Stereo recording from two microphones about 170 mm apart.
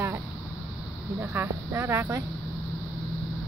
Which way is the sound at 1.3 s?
15° right (ahead or behind).